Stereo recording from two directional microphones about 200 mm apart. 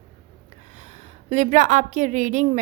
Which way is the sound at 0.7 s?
35° right (ahead or behind).